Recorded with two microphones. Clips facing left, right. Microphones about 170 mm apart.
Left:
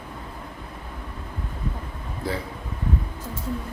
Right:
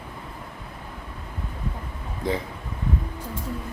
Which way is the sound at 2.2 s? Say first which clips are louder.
Right 3 dB; 20° right (ahead or behind).